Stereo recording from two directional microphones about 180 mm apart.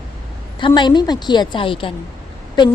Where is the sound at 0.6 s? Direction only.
25° left (ahead or behind).